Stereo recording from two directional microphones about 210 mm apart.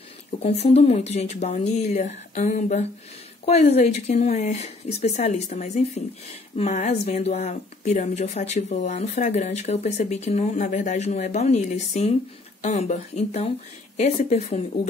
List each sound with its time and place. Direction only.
0.4 s speech: 30° left (ahead or behind)